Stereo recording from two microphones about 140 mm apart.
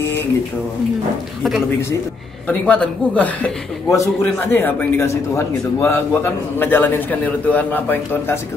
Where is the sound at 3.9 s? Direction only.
20° left (ahead or behind).